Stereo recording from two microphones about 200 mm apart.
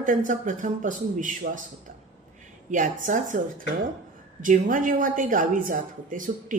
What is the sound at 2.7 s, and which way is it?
A woman's voice, 40° right (ahead or behind).